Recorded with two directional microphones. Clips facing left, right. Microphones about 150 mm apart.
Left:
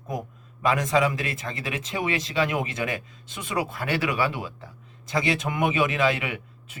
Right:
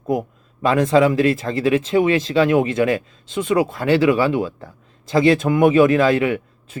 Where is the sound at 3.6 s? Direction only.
25° right (ahead or behind).